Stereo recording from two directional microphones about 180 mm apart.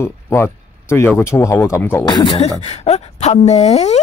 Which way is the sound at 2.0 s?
25° left (ahead or behind).